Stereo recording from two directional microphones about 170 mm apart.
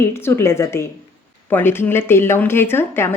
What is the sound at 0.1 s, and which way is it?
Speech, 15° left (ahead or behind).